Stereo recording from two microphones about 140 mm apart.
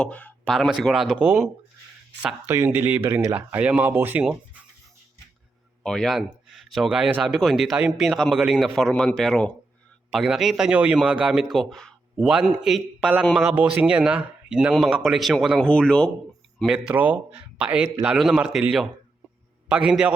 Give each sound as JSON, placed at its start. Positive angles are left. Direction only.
{"t": 0.0, "sound": "speech", "side_deg": 10}
{"t": 0.5, "sound": "speech", "side_deg": 0}
{"t": 2.6, "sound": "speech", "side_deg": -10}
{"t": 3.1, "sound": "speech", "side_deg": -20}
{"t": 3.3, "sound": "speech", "side_deg": -10}
{"t": 5.8, "sound": "speech", "side_deg": 5}
{"t": 16.6, "sound": "speech", "side_deg": -5}
{"t": 19.7, "sound": "speech", "side_deg": -5}